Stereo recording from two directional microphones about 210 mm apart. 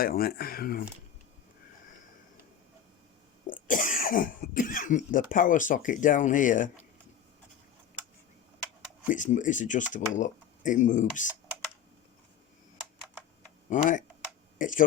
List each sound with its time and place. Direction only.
0.0 s speech: 45° left (ahead or behind)
3.4 s speech: 40° left (ahead or behind)
9.1 s speech: 35° left (ahead or behind)
13.7 s speech: 35° left (ahead or behind)